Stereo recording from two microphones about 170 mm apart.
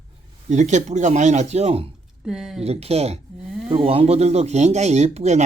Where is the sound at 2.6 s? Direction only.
40° right (ahead or behind).